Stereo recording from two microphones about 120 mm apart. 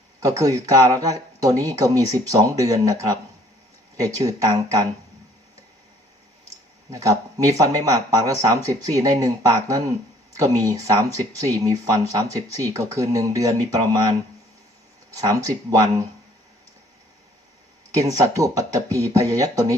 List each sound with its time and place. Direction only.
0.2 s speech: 25° right (ahead or behind)
6.9 s speech: 30° right (ahead or behind)
17.9 s speech: 30° right (ahead or behind)